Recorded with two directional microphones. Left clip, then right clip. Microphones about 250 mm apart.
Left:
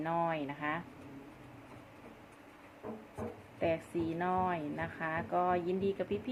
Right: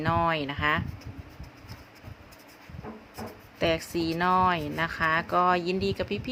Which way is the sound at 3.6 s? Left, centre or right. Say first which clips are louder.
Right 7 dB; right.